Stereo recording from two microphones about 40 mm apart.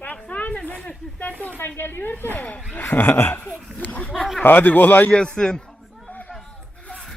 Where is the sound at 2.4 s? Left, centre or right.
Left.